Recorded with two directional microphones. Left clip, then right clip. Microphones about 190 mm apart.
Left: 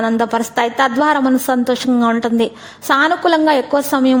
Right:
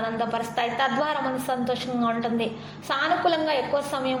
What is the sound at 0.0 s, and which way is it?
A woman's voice, 50° left (ahead or behind).